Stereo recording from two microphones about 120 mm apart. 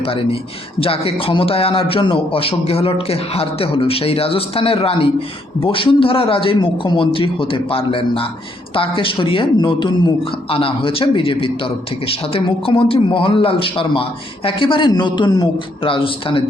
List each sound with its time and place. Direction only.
0.0 s a man's voice: 50° left (ahead or behind)